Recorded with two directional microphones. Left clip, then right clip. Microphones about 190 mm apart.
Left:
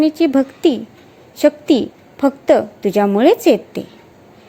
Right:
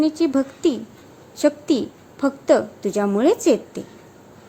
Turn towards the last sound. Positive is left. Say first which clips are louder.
# left 5 dB
turn(degrees=15)  # may be behind; listen again after turning